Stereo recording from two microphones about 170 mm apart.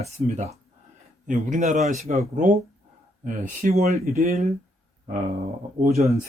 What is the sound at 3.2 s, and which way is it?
Speech, 50° right (ahead or behind).